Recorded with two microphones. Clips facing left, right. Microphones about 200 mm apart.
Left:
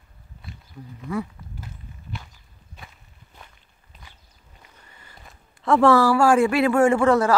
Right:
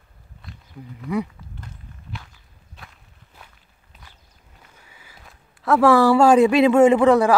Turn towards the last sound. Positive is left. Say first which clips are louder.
# right 3 dB
turn(degrees=-15)  # may be behind; listen again after turning